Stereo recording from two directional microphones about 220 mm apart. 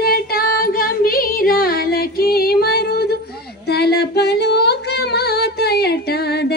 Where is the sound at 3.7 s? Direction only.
45° left (ahead or behind).